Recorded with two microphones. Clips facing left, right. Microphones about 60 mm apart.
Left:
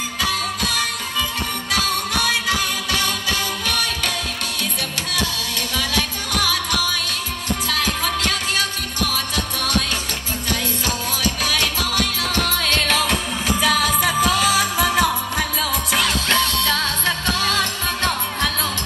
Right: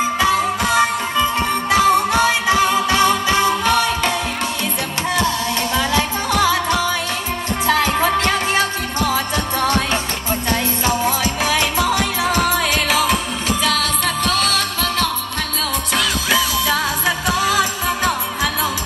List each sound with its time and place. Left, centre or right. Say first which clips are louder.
0.2 s music: right 4 dB; right
5.8 s music: right 4 dB; right
10.9 s music: right 7 dB; right; by 15.0 s centre
15.9 s music: right 2 dB; centre